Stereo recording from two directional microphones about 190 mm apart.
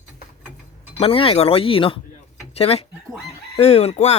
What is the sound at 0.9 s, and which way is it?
Speech, 30° left (ahead or behind).